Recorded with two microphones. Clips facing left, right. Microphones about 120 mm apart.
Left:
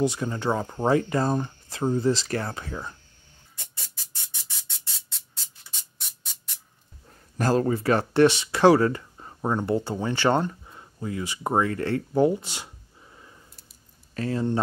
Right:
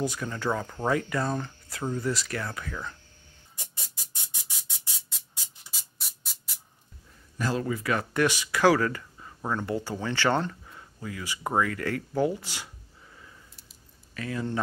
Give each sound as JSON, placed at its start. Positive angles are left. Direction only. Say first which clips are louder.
{"t": 0.0, "sound": "speech", "louder": "left 5 dB", "side_deg": 25}
{"t": 3.7, "sound": "music", "louder": "even", "side_deg": -15}
{"t": 7.1, "sound": "speech", "louder": "left 6 dB", "side_deg": 45}